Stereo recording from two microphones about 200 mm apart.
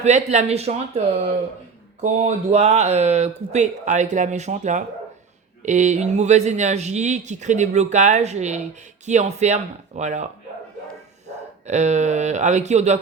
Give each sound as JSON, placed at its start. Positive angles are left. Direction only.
{"t": 0.0, "sound": "speech", "side_deg": -35}
{"t": 11.6, "sound": "speech", "side_deg": -35}